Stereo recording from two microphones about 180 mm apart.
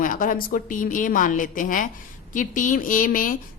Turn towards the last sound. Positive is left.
turn(degrees=50)  # may be behind; listen again after turning